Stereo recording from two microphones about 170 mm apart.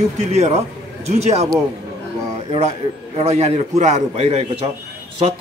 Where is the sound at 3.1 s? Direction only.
40° right (ahead or behind).